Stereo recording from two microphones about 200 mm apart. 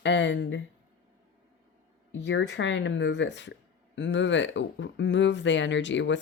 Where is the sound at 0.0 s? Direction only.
65° left (ahead or behind).